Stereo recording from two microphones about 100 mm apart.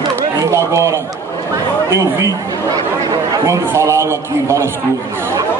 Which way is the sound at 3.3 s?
30° right (ahead or behind).